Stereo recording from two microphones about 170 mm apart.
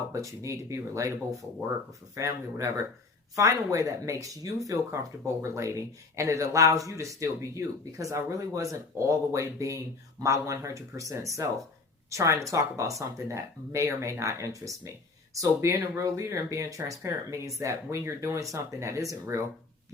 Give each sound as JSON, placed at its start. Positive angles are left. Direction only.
{"t": 0.1, "sound": "speech", "side_deg": -20}